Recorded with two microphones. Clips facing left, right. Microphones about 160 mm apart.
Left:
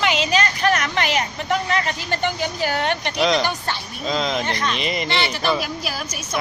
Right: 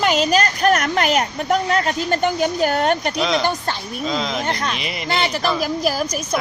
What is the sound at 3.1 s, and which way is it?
Speech, centre (ahead or behind).